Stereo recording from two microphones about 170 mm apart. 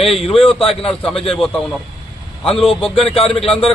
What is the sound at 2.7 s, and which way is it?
Speech, 30° left (ahead or behind).